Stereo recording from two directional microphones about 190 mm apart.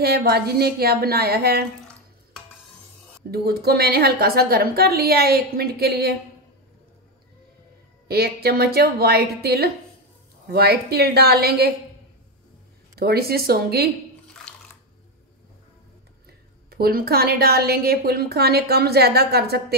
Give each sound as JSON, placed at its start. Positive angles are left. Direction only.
{"t": 0.0, "sound": "a woman's voice", "side_deg": -55}
{"t": 3.3, "sound": "a woman's voice", "side_deg": -55}
{"t": 8.1, "sound": "a woman's voice", "side_deg": -55}
{"t": 12.9, "sound": "a woman's voice", "side_deg": -55}
{"t": 16.7, "sound": "a woman's voice", "side_deg": -55}